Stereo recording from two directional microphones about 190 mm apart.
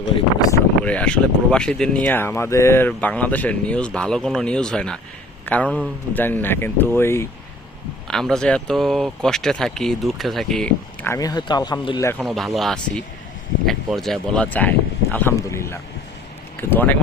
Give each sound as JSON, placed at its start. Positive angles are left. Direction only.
{"t": 0.3, "sound": "a sound", "side_deg": 20}
{"t": 0.9, "sound": "speech", "side_deg": 5}
{"t": 8.0, "sound": "speech", "side_deg": 5}
{"t": 12.2, "sound": "speech", "side_deg": 0}